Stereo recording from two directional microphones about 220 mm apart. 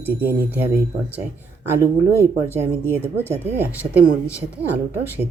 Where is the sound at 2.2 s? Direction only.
10° right (ahead or behind).